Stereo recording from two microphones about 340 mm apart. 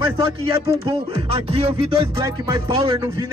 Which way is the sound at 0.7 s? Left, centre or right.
Centre.